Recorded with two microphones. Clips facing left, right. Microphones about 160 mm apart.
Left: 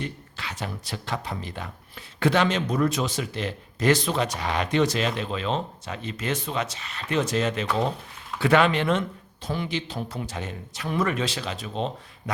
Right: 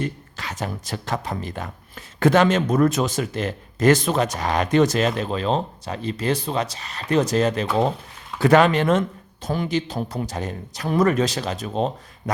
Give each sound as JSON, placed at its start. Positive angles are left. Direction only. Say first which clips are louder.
{"t": 0.0, "sound": "speech", "louder": "right 5 dB", "side_deg": -45}